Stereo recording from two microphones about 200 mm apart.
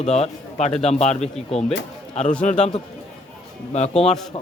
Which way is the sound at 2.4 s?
35° left (ahead or behind).